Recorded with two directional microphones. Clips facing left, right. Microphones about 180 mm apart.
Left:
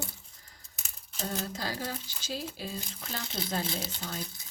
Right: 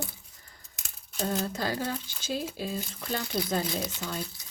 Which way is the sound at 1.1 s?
55° right (ahead or behind).